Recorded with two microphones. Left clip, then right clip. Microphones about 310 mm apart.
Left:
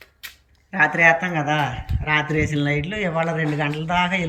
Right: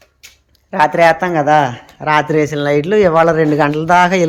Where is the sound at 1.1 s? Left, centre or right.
Centre.